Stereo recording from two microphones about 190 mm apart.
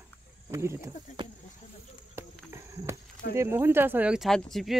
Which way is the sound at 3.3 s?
15° right (ahead or behind).